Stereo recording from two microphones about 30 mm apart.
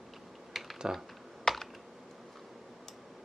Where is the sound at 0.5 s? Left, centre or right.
Centre.